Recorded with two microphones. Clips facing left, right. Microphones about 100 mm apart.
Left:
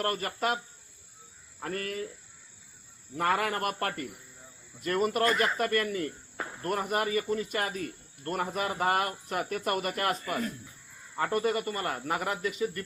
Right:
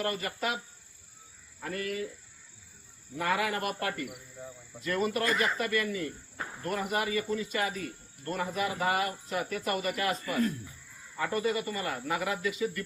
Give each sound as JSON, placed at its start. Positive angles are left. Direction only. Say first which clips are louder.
{"t": 0.0, "sound": "speech", "louder": "left 2 dB", "side_deg": 50}
{"t": 1.6, "sound": "speech", "louder": "even", "side_deg": 45}
{"t": 3.2, "sound": "speech", "louder": "left 2 dB", "side_deg": 50}